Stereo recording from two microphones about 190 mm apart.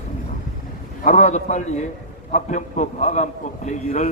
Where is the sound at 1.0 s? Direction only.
40° left (ahead or behind).